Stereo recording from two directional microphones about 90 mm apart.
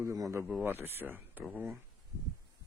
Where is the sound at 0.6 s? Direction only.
25° right (ahead or behind).